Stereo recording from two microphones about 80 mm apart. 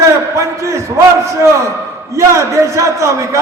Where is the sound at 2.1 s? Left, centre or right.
Right.